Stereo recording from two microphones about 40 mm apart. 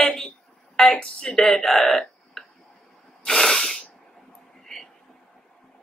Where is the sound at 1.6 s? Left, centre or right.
Centre.